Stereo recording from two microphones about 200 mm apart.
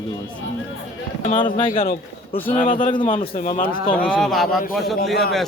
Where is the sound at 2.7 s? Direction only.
40° left (ahead or behind).